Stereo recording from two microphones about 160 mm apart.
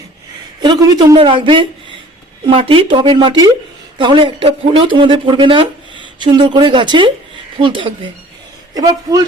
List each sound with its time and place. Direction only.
0.6 s speech: 25° right (ahead or behind)